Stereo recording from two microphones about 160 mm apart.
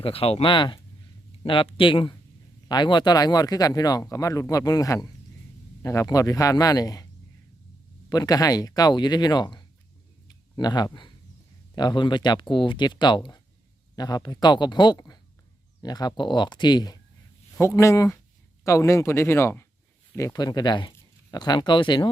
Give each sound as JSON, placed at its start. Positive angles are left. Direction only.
{"t": 0.0, "sound": "speech", "side_deg": 35}
{"t": 8.1, "sound": "speech", "side_deg": 25}
{"t": 10.2, "sound": "a sound", "side_deg": 25}
{"t": 11.7, "sound": "speech", "side_deg": 25}